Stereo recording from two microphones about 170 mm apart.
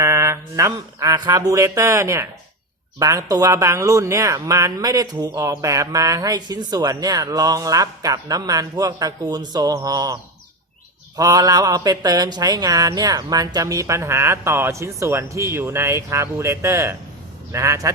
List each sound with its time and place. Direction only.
0.0 s speech: 15° right (ahead or behind)
11.2 s speech: 20° right (ahead or behind)